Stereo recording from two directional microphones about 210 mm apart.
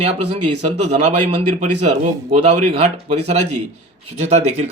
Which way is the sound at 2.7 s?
30° right (ahead or behind).